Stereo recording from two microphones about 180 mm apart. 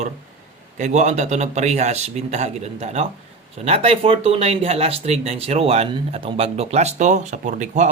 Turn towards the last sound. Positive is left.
turn(degrees=-40)  # may be behind; listen again after turning